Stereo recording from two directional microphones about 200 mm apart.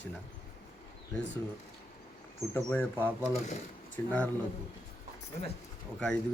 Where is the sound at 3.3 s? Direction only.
35° left (ahead or behind).